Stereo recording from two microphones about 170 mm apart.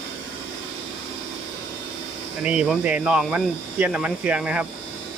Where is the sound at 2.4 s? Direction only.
5° right (ahead or behind).